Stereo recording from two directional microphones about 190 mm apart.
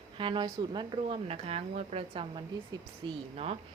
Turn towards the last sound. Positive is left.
turn(degrees=-30)  # may be behind; listen again after turning